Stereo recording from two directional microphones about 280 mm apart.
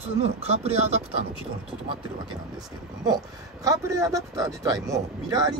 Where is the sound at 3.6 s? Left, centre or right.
Centre.